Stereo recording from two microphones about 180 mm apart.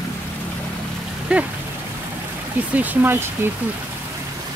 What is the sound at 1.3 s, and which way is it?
Speech, 5° right (ahead or behind).